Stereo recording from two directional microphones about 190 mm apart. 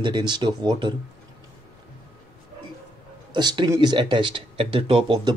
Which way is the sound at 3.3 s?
25° right (ahead or behind).